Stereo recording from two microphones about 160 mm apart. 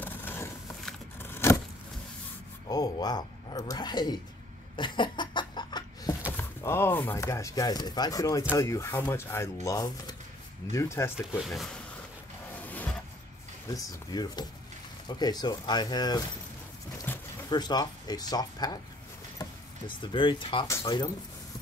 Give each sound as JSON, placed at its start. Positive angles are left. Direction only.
{"t": 0.0, "sound": "a sound", "side_deg": 15}
{"t": 1.3, "sound": "vehicle", "side_deg": 15}
{"t": 2.7, "sound": "speech", "side_deg": 25}
{"t": 4.7, "sound": "a sound", "side_deg": 30}
{"t": 6.3, "sound": "speech", "side_deg": 15}
{"t": 11.3, "sound": "speech", "side_deg": 0}
{"t": 12.6, "sound": "music", "side_deg": 10}
{"t": 13.7, "sound": "speech", "side_deg": 25}
{"t": 17.1, "sound": "a sound", "side_deg": 10}
{"t": 17.5, "sound": "speech", "side_deg": 25}
{"t": 20.0, "sound": "speech", "side_deg": 30}
{"t": 20.6, "sound": "speech", "side_deg": 20}